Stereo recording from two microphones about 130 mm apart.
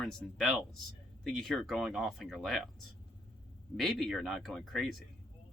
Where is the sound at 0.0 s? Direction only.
5° left (ahead or behind).